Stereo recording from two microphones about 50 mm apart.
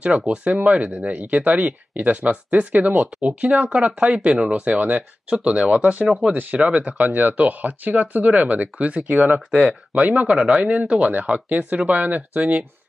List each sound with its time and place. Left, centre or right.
0.0 s speech: right
4.1 s speech: centre
4.5 s speech: right
6.0 s speech: centre
6.3 s speech: right